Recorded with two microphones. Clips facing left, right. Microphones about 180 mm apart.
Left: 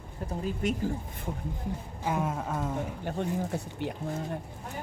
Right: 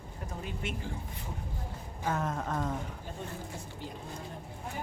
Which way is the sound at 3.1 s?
70° left (ahead or behind).